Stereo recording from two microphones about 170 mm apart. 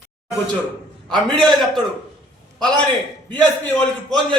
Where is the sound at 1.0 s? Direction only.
5° left (ahead or behind).